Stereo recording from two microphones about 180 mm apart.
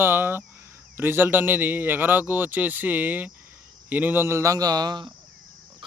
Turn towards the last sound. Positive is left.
turn(degrees=-25)  # may be behind; listen again after turning